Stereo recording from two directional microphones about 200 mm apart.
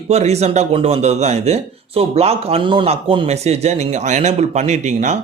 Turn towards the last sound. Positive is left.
turn(degrees=-35)  # may be behind; listen again after turning